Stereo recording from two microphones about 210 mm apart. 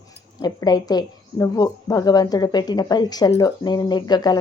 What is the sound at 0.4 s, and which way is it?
A woman's voice, 20° left (ahead or behind).